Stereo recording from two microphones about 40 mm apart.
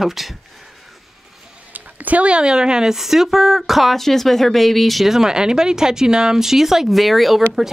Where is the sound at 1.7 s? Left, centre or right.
Right.